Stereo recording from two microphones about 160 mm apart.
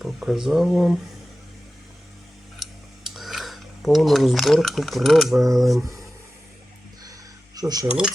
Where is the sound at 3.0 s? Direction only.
Centre (ahead or behind).